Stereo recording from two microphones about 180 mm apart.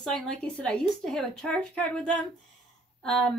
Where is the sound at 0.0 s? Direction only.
5° left (ahead or behind).